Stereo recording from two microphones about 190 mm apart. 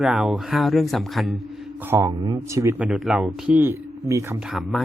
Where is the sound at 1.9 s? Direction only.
15° right (ahead or behind).